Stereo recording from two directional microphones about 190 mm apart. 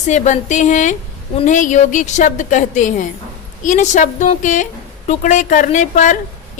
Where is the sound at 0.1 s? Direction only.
40° left (ahead or behind).